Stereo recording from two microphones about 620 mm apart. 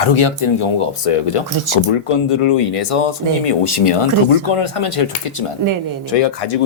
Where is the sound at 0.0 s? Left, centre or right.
Left.